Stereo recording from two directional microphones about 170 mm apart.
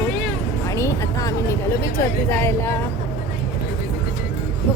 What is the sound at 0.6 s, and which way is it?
Speech, 15° left (ahead or behind).